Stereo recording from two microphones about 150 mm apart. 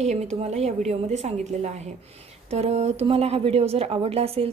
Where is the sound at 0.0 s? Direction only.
50° right (ahead or behind).